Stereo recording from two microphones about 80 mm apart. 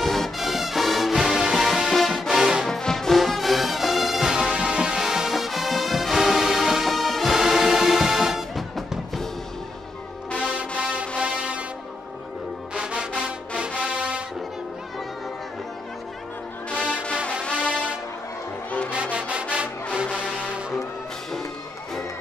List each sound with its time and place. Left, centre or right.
0.0 s music: centre
10.8 s music: centre
12.7 s music: centre
16.7 s music: centre
17.6 s brass instrument: centre
18.9 s music: centre